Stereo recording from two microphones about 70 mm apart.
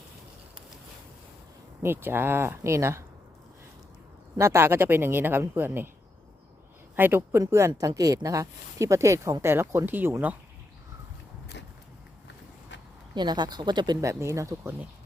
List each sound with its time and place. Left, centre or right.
1.8 s speech: right
4.4 s speech: right
6.9 s speech: right
7.3 s speech: right
7.7 s speech: right
9.4 s speech: right
13.1 s speech: right
14.0 s speech: right